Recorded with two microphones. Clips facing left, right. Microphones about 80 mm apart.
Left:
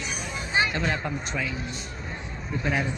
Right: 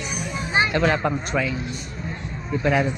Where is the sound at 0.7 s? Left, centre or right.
Right.